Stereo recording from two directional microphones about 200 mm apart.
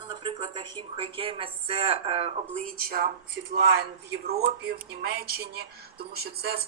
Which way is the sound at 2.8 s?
50° right (ahead or behind).